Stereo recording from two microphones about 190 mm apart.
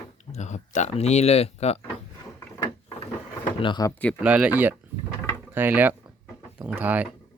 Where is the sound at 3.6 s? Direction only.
25° left (ahead or behind).